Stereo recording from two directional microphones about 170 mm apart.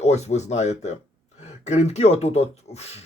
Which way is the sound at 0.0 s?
40° left (ahead or behind).